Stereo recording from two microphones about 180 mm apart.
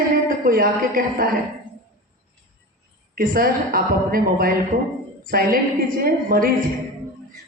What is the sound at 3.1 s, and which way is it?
A woman's voice, 55° right (ahead or behind).